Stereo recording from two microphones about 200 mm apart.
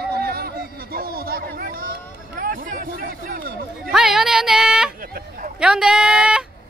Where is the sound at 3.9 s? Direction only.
Centre (ahead or behind).